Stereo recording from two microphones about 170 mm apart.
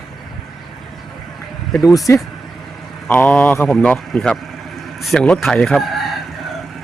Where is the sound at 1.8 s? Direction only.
20° left (ahead or behind).